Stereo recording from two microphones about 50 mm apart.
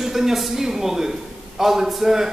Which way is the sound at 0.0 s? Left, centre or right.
Centre.